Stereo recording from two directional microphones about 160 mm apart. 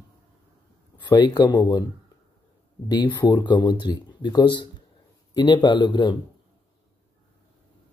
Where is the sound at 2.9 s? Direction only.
25° left (ahead or behind).